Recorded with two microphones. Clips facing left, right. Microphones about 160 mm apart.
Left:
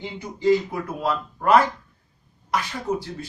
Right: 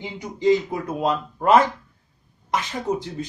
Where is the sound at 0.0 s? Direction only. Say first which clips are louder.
Right 1 dB; 15° right (ahead or behind).